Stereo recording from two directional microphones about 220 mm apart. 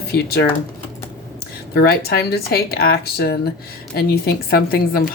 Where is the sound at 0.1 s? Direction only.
45° left (ahead or behind).